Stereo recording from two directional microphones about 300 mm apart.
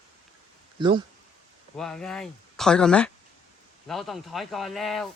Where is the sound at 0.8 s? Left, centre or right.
Centre.